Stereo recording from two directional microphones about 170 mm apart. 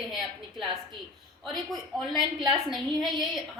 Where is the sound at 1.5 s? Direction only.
Centre (ahead or behind).